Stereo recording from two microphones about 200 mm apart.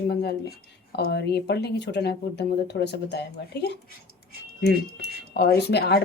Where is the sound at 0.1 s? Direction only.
55° left (ahead or behind).